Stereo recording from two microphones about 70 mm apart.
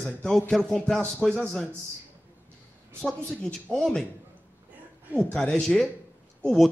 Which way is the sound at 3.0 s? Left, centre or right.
Centre.